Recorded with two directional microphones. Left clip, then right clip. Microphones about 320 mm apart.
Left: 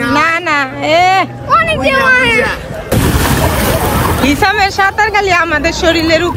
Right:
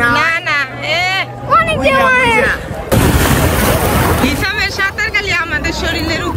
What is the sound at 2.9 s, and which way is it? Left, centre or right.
Boat, centre.